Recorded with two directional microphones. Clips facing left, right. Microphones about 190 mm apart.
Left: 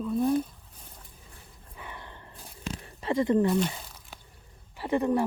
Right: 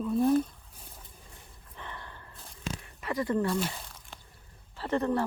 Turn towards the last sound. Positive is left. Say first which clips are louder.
# left 3 dB
turn(degrees=15)  # may be behind; listen again after turning